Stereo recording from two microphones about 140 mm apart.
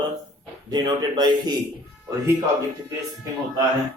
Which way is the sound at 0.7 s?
30° right (ahead or behind).